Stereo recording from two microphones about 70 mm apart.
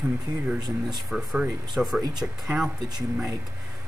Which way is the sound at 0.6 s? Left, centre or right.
Right.